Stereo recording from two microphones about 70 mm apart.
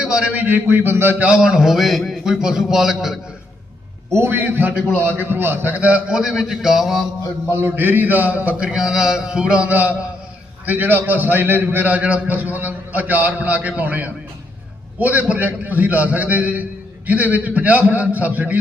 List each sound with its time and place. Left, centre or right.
0.0 s a sound: centre
0.3 s a man's voice: right
1.2 s a man's voice: centre
4.1 s a man's voice: right
4.9 s a man's voice: left
5.2 s a man's voice: right
6.1 s a man's voice: centre
7.5 s a sound: right
10.7 s a man's voice: right